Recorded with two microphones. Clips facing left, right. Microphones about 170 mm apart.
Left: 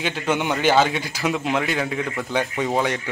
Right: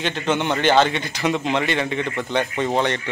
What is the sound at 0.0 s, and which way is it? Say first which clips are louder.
A man's voice: right 1 dB; 5° left (ahead or behind).